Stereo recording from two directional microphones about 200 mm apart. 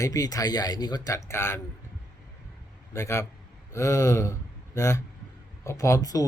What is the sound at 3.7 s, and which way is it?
Gasp, 15° left (ahead or behind).